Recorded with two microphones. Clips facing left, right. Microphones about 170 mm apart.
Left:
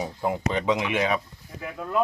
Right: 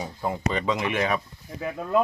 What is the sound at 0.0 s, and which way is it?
Speech, 10° left (ahead or behind).